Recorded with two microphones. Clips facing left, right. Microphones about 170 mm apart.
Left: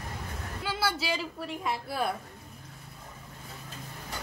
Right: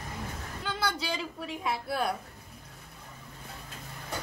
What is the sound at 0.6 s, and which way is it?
A woman's voice, 5° left (ahead or behind).